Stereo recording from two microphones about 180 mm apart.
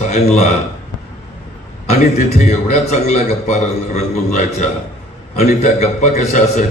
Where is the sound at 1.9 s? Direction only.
40° left (ahead or behind).